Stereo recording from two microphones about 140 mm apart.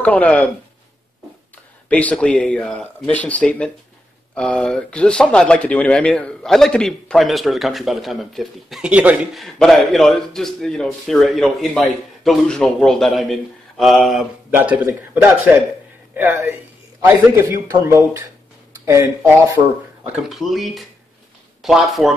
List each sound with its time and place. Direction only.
0.0 s speech: 10° left (ahead or behind)
1.9 s speech: 10° left (ahead or behind)
14.5 s a man's voice: 15° right (ahead or behind)
20.2 s speech: centre (ahead or behind)